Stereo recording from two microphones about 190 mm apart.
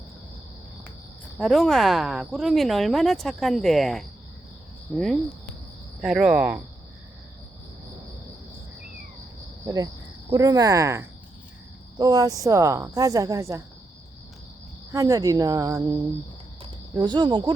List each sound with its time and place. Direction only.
1.4 s speech: centre (ahead or behind)
9.6 s speech: 20° right (ahead or behind)
14.9 s speech: 15° right (ahead or behind)